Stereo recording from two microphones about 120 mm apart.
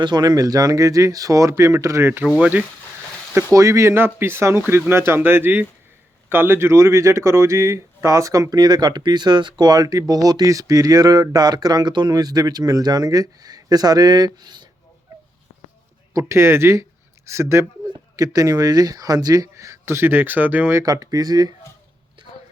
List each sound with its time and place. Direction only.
0.0 s speech: 35° right (ahead or behind); by 2.6 s 15° right (ahead or behind)
3.3 s speech: 25° right (ahead or behind)
16.1 s speech: 20° right (ahead or behind)
20.8 s speech: 30° right (ahead or behind)